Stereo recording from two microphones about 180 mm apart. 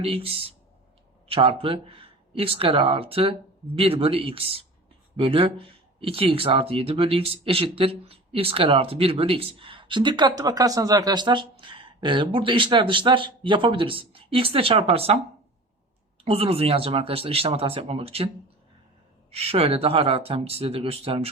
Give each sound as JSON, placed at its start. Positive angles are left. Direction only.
{"t": 0.0, "sound": "speech", "side_deg": -30}
{"t": 16.2, "sound": "speech", "side_deg": -35}
{"t": 19.3, "sound": "speech", "side_deg": -35}